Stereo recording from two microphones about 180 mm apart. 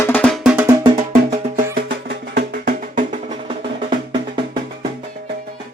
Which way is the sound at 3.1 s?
30° right (ahead or behind).